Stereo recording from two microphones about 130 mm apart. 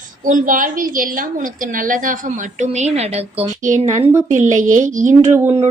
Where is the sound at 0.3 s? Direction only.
90° right.